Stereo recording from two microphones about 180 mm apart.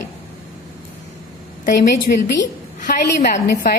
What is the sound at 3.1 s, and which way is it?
Speech, 60° left (ahead or behind).